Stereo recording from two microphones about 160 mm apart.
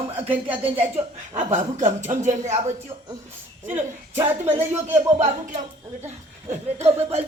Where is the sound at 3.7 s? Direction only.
15° right (ahead or behind).